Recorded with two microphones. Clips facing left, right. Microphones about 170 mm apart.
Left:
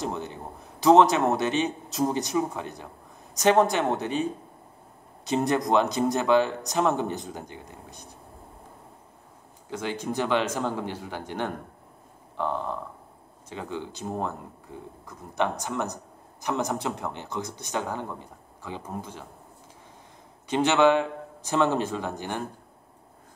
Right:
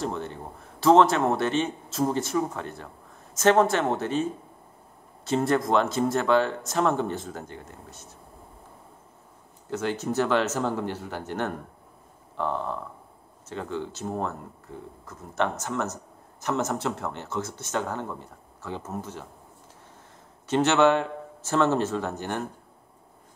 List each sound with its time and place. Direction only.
0.1 s speech: 5° left (ahead or behind)
0.7 s speech: 20° left (ahead or behind)
9.7 s speech: 10° left (ahead or behind)
12.4 s a sound: 5° left (ahead or behind)
13.5 s a man's voice: 10° left (ahead or behind)
20.4 s speech: 10° left (ahead or behind)